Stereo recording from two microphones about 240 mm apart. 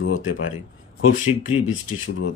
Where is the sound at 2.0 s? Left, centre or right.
Left.